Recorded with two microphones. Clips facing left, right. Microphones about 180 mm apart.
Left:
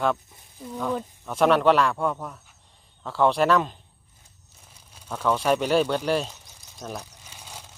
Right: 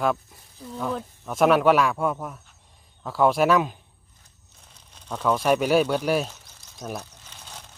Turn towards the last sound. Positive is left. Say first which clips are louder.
# even
turn(degrees=10)  # may be behind; listen again after turning